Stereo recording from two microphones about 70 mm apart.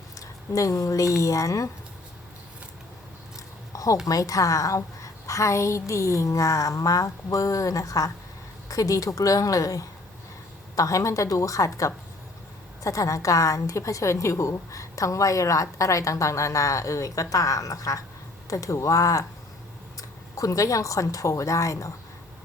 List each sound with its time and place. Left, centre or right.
0.2 s a woman's voice: left
3.7 s a sound: left
4.0 s a woman's voice: left